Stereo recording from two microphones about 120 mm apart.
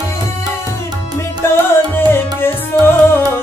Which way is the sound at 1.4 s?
20° left (ahead or behind).